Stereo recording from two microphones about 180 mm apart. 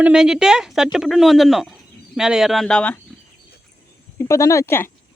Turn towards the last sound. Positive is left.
turn(degrees=15)  # may be behind; listen again after turning